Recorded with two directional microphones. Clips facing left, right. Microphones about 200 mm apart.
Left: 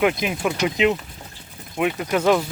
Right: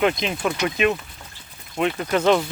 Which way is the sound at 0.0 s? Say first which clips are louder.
Left 1 dB; 10° left (ahead or behind).